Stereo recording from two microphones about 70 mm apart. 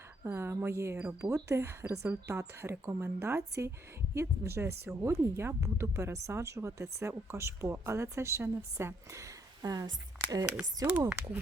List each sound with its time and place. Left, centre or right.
0.3 s a woman's voice: right
9.6 s speech: right
10.8 s speech: right